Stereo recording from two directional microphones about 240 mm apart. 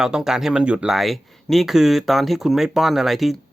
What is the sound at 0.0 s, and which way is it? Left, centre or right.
Speech, centre.